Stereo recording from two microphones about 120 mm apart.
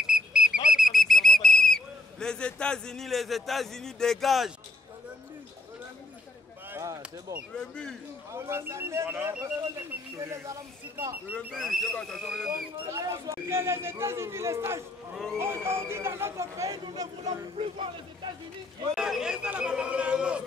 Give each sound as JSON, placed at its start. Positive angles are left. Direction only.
{"t": 0.0, "sound": "a sound", "side_deg": -5}
{"t": 0.7, "sound": "whistle", "side_deg": 0}
{"t": 6.7, "sound": "a sound", "side_deg": -25}
{"t": 7.5, "sound": "speech", "side_deg": 5}
{"t": 8.3, "sound": "speech", "side_deg": -20}
{"t": 9.6, "sound": "speech", "side_deg": -25}
{"t": 11.5, "sound": "speech", "side_deg": 0}
{"t": 12.9, "sound": "speech", "side_deg": -25}
{"t": 17.6, "sound": "speech", "side_deg": -45}
{"t": 18.9, "sound": "speech", "side_deg": -5}